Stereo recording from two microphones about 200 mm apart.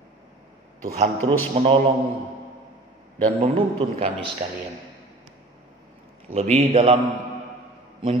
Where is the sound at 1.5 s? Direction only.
35° right (ahead or behind).